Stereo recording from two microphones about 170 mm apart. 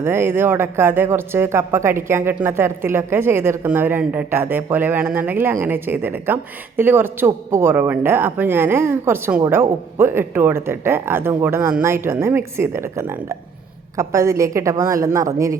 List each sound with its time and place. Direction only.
0.0 s a woman's voice: 15° right (ahead or behind)